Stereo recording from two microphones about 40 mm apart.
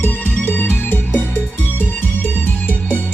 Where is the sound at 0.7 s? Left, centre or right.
Left.